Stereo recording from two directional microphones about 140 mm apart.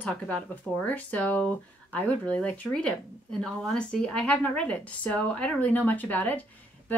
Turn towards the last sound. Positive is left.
turn(degrees=10)  # may be behind; listen again after turning